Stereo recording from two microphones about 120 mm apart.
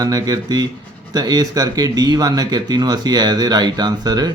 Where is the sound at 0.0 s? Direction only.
30° right (ahead or behind).